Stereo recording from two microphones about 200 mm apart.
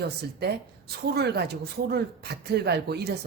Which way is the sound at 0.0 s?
55° right (ahead or behind).